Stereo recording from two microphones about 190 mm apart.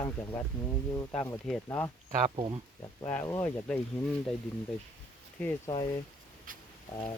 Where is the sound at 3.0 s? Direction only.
10° left (ahead or behind).